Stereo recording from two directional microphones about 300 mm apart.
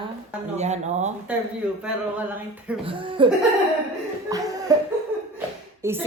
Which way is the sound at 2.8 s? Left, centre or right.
Centre.